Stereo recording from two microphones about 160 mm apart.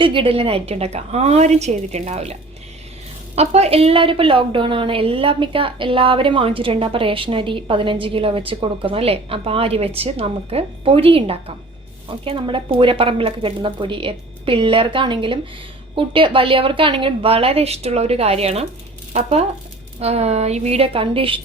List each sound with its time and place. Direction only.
0.0 s a woman's voice: 30° right (ahead or behind)
3.3 s a woman's voice: 40° right (ahead or behind)